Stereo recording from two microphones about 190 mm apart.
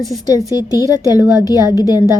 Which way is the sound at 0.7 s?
15° right (ahead or behind).